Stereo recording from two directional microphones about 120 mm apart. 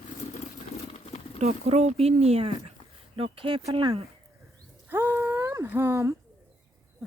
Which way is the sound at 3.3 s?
45° right (ahead or behind).